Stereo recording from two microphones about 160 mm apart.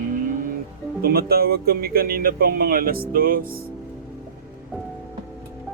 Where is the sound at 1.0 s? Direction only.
75° right (ahead or behind).